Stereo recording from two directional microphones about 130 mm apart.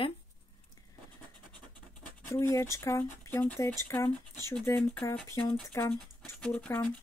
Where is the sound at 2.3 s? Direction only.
20° left (ahead or behind).